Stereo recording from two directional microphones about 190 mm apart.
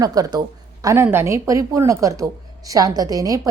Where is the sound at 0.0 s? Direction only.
20° right (ahead or behind).